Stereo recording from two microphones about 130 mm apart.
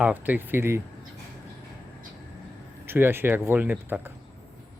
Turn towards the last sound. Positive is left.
turn(degrees=-15)  # may be behind; listen again after turning